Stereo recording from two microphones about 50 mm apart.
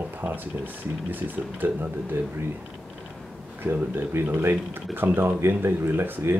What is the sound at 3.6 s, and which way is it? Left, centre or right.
Speech, right.